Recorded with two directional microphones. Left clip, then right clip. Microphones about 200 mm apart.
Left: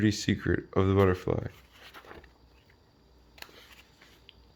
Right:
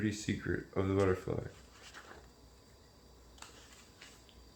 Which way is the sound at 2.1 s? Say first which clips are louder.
Left 6 dB; 30° left (ahead or behind).